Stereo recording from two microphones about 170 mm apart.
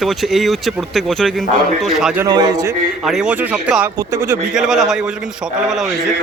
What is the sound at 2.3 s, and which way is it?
Speech, 25° right (ahead or behind).